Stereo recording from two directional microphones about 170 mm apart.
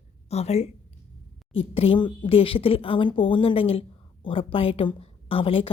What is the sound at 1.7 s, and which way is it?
A woman's voice, 35° left (ahead or behind).